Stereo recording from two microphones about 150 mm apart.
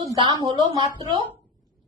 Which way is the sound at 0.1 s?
30° right (ahead or behind).